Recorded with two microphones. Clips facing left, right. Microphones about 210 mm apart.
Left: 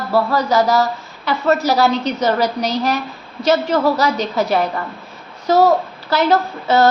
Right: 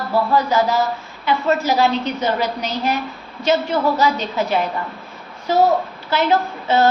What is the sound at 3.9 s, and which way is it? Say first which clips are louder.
Speech: left 1 dB; 40° left (ahead or behind).